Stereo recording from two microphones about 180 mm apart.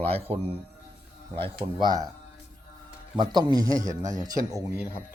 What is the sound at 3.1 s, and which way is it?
A man's voice, 25° right (ahead or behind).